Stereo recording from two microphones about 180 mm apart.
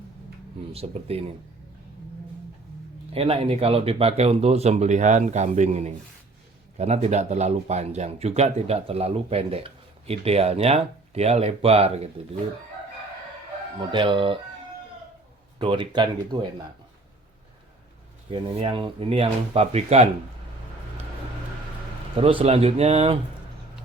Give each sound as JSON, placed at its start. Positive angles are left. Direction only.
{"t": 0.7, "sound": "speech", "side_deg": -35}
{"t": 3.1, "sound": "speech", "side_deg": -30}
{"t": 13.9, "sound": "speech", "side_deg": -25}
{"t": 15.5, "sound": "speech", "side_deg": -30}
{"t": 18.3, "sound": "speech", "side_deg": -30}
{"t": 22.2, "sound": "speech", "side_deg": -30}